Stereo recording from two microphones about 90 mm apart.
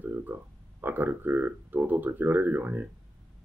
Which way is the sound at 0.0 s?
20° right (ahead or behind).